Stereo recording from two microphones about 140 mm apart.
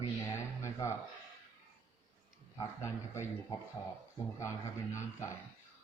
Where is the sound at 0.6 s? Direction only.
20° left (ahead or behind).